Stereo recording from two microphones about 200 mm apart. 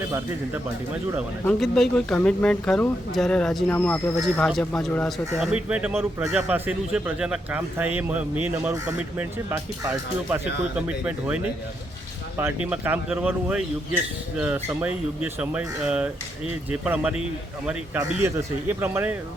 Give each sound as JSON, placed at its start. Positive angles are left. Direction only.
{"t": 1.5, "sound": "a man's voice", "side_deg": 0}
{"t": 12.4, "sound": "a man's voice", "side_deg": -10}